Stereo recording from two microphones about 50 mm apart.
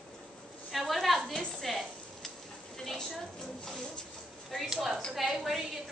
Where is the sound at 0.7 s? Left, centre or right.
Centre.